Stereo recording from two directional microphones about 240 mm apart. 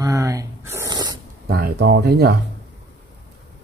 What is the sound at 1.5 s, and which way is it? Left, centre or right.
Speech, right.